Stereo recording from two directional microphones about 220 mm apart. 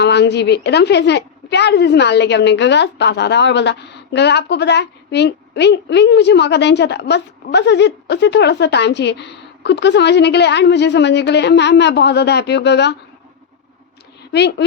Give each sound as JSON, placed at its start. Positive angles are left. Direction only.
{"t": 0.0, "sound": "a woman's voice", "side_deg": 50}